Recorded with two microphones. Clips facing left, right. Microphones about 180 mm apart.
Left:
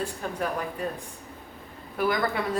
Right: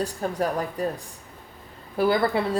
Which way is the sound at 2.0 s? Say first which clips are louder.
Right 5 dB; 30° right (ahead or behind).